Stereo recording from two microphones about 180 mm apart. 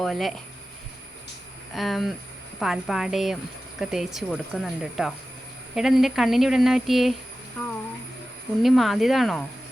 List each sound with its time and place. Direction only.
0.0 s a woman's voice: centre (ahead or behind)
1.7 s a woman's voice: centre (ahead or behind)
8.6 s a woman's voice: centre (ahead or behind)